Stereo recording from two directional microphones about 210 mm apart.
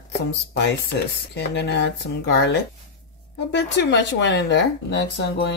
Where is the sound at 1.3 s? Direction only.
55° left (ahead or behind).